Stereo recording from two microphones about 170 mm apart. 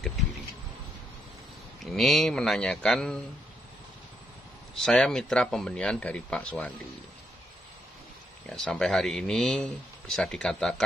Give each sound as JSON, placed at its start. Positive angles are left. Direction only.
{"t": 1.9, "sound": "speech", "side_deg": 0}
{"t": 4.7, "sound": "speech", "side_deg": 5}
{"t": 8.5, "sound": "speech", "side_deg": 5}